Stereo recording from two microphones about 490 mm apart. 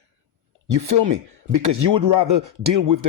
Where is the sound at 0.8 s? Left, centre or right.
Right.